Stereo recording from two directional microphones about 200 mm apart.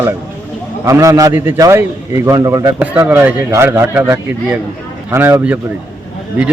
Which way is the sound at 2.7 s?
5° right (ahead or behind).